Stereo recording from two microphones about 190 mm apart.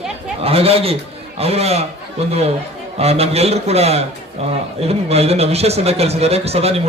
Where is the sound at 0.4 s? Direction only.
30° right (ahead or behind).